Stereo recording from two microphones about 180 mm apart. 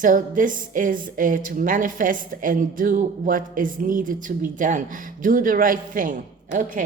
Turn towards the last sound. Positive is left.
turn(degrees=-45)  # may be behind; listen again after turning